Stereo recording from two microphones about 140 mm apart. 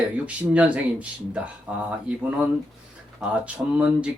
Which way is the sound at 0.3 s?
10° right (ahead or behind).